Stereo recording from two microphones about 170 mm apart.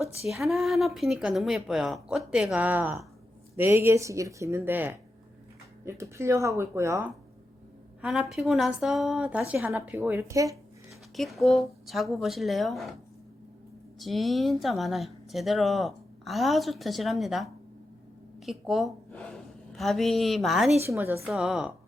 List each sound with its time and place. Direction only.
0.3 s a woman's voice: centre (ahead or behind)
8.0 s a woman's voice: 5° right (ahead or behind); by 10.6 s 20° right (ahead or behind)
11.2 s speech: centre (ahead or behind)
14.0 s a woman's voice: centre (ahead or behind)
20.8 s a woman's voice: 15° right (ahead or behind)
21.2 s speech: centre (ahead or behind)